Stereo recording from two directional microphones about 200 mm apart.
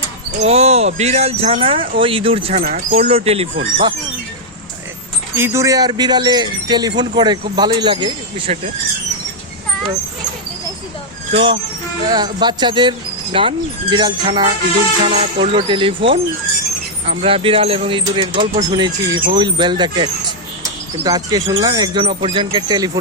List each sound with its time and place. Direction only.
0.3 s speech: 30° right (ahead or behind)
5.4 s speech: 15° right (ahead or behind)
11.3 s speech: 30° right (ahead or behind)
12.0 s speech: 20° right (ahead or behind)